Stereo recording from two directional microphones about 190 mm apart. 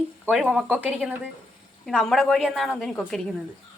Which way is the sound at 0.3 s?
5° right (ahead or behind).